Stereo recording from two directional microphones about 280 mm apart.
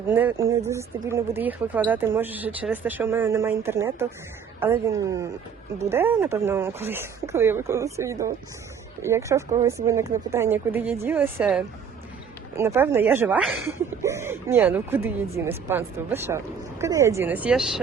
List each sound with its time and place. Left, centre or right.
0.1 s speech: centre